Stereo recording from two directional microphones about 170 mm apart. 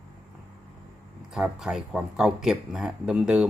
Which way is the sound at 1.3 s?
5° right (ahead or behind).